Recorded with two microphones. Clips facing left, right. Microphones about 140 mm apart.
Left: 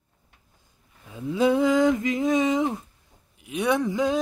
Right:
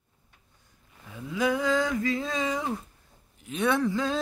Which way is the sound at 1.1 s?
25° left (ahead or behind).